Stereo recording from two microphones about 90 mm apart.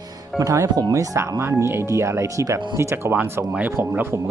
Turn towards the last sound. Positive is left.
turn(degrees=-25)  # may be behind; listen again after turning